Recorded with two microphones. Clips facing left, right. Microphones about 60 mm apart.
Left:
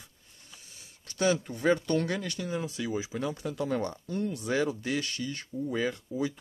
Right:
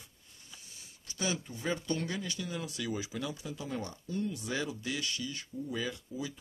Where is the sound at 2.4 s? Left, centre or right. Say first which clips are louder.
Left 5 dB; left.